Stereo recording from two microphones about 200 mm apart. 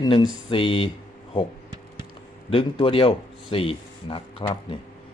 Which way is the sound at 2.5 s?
25° left (ahead or behind).